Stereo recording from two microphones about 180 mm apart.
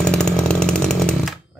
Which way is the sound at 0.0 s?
5° left (ahead or behind).